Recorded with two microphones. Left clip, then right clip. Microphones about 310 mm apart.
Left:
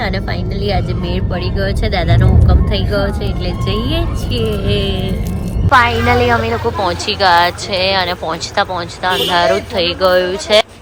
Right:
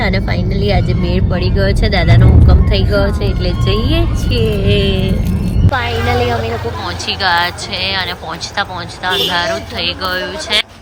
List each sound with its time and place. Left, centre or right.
0.6 s a woman's voice: centre
9.0 s a woman's voice: centre